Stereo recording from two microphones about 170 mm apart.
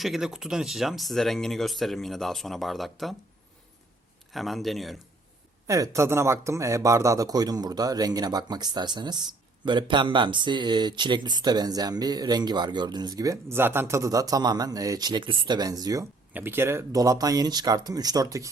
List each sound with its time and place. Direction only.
0.0 s speech: centre (ahead or behind)
4.3 s speech: centre (ahead or behind)
5.6 s a man's voice: 20° right (ahead or behind)